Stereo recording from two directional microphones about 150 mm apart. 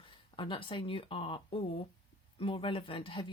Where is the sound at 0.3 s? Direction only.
35° left (ahead or behind).